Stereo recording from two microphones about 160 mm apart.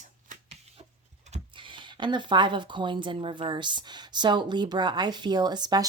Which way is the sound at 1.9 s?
30° right (ahead or behind).